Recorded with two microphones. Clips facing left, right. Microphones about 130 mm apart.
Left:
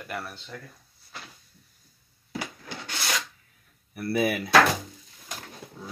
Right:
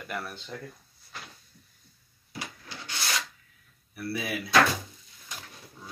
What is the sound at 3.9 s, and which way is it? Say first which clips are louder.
Speech: left 7 dB; 55° left (ahead or behind).